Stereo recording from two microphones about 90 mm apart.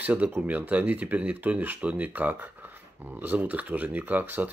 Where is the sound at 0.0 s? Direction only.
20° right (ahead or behind).